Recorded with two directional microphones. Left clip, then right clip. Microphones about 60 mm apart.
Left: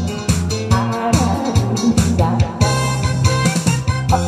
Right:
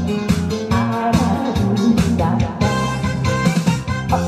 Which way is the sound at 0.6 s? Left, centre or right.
Left.